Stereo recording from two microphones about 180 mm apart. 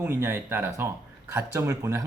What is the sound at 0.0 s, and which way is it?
Speech, 10° right (ahead or behind).